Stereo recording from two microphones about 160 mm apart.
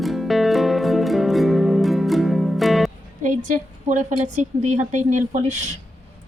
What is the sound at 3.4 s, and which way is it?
A woman's voice, 50° right (ahead or behind).